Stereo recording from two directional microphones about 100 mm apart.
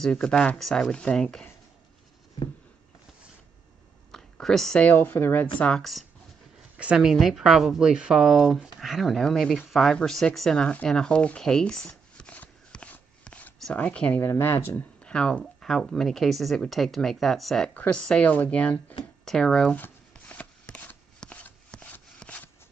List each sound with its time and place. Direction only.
0.0 s speech: 5° left (ahead or behind)
4.1 s a sound: 5° left (ahead or behind)
4.8 s speech: 20° left (ahead or behind)
5.6 s speech: 5° left (ahead or behind)
6.8 s speech: 10° right (ahead or behind)
9.7 s a sound: 5° left (ahead or behind)
13.7 s speech: 15° left (ahead or behind)
14.3 s speech: 25° left (ahead or behind)
15.0 s speech: 10° left (ahead or behind)
19.7 s shuffling cards: 15° left (ahead or behind)